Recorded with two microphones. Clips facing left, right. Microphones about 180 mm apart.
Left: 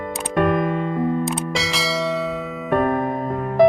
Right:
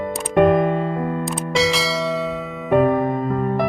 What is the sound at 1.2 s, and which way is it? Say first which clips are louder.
Music: right 4 dB; centre (ahead or behind).